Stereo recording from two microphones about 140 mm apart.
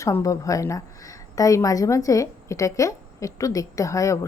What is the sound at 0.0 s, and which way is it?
Speech, 25° left (ahead or behind).